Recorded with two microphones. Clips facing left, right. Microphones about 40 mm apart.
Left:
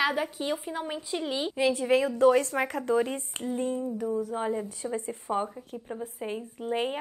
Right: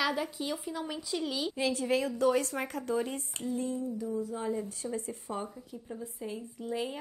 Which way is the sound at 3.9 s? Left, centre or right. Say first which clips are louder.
Left 5 dB; left.